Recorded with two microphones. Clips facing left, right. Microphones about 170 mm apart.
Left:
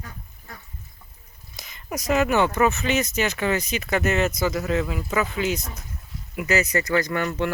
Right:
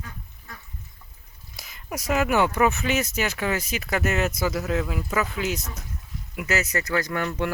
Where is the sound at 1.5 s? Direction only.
5° right (ahead or behind).